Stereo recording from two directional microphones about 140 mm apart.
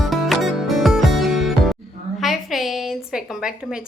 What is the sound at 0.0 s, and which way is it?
Music, centre (ahead or behind).